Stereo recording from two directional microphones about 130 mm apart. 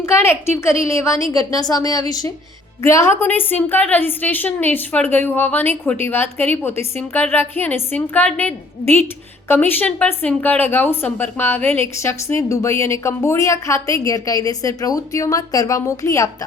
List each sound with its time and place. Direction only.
0.0 s a woman's voice: 20° left (ahead or behind)